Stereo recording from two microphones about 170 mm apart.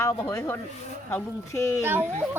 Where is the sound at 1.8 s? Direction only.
10° right (ahead or behind).